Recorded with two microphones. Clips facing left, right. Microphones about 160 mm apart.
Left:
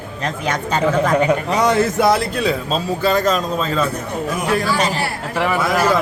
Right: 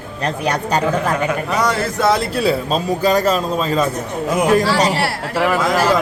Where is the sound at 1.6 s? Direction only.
25° left (ahead or behind).